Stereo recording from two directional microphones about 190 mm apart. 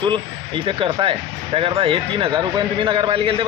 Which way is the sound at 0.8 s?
30° right (ahead or behind).